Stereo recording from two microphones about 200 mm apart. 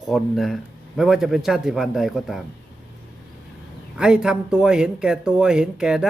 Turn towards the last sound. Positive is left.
turn(degrees=-5)  # may be behind; listen again after turning